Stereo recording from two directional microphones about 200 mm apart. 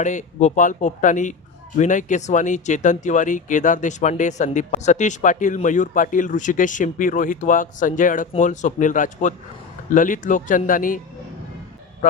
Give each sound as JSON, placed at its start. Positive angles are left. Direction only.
{"t": 0.0, "sound": "speech", "side_deg": 40}